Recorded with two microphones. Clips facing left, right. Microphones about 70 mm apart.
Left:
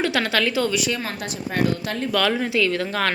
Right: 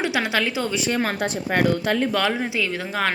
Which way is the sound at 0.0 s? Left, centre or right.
Centre.